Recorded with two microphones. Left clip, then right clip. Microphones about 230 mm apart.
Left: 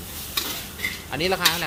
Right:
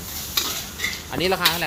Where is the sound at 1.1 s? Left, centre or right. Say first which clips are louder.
Right 1 dB; centre.